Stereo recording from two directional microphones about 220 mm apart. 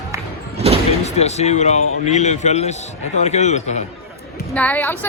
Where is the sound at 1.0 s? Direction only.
30° left (ahead or behind).